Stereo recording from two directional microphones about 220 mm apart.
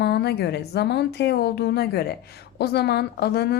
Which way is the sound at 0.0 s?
50° left (ahead or behind).